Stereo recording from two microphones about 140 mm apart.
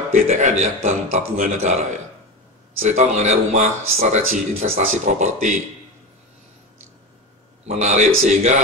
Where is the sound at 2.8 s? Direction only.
55° right (ahead or behind).